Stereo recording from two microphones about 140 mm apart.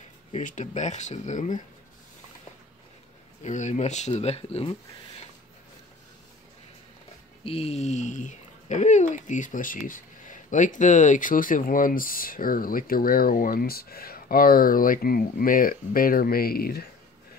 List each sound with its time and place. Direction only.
0.3 s speech: 65° left (ahead or behind)
3.4 s speech: 60° left (ahead or behind)
7.4 s speech: 45° left (ahead or behind); by 16.8 s 90° left